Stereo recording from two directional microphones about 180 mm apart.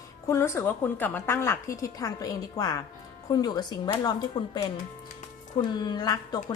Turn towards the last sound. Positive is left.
turn(degrees=25)  # may be behind; listen again after turning